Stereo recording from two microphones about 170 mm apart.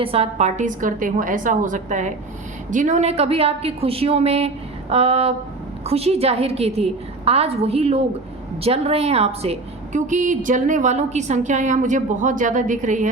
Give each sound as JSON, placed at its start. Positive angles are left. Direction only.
{"t": 0.0, "sound": "a woman's voice", "side_deg": -35}